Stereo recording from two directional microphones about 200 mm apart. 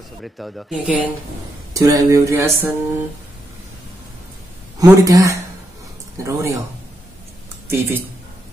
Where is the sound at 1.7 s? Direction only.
15° right (ahead or behind).